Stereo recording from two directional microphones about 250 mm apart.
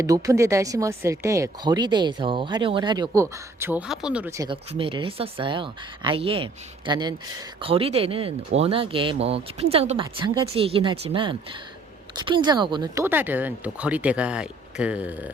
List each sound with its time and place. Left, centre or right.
0.0 s speech: centre